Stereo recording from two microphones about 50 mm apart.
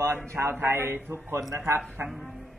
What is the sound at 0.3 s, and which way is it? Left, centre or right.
A man's voice, right.